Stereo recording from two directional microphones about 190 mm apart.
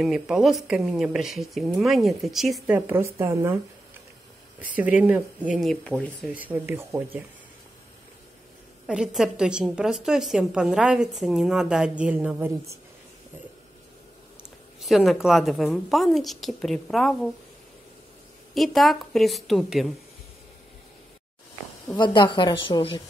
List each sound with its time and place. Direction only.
0.0 s a woman's voice: centre (ahead or behind)
4.6 s speech: 10° right (ahead or behind)
6.2 s speech: 10° right (ahead or behind)
8.8 s a woman's voice: 5° right (ahead or behind)
14.8 s a woman's voice: centre (ahead or behind)
18.5 s a woman's voice: centre (ahead or behind)
21.8 s a woman's voice: 25° left (ahead or behind)